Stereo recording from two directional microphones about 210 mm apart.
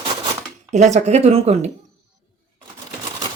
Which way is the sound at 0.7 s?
35° right (ahead or behind).